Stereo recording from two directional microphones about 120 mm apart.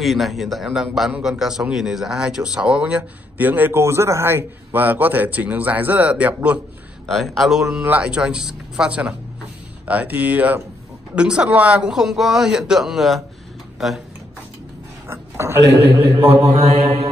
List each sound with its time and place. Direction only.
0.0 s speech: centre (ahead or behind)
7.1 s speech: centre (ahead or behind)
15.0 s speech: 20° right (ahead or behind)
16.4 s mantra: 60° right (ahead or behind)